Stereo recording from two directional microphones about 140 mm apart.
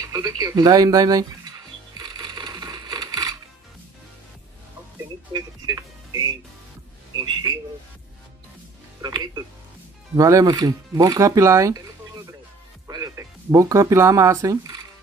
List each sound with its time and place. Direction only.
0.0 s speech: 25° right (ahead or behind)
2.0 s coin: 30° right (ahead or behind)
5.3 s music: 25° right (ahead or behind)
9.0 s speech: 30° right (ahead or behind)
12.8 s speech: 25° right (ahead or behind)